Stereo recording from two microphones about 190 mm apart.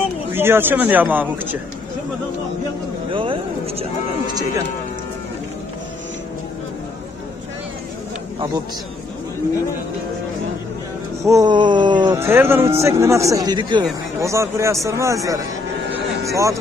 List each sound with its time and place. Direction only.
0.3 s speech: 10° right (ahead or behind)
3.1 s a sound: 25° right (ahead or behind)
11.2 s speech: 20° right (ahead or behind)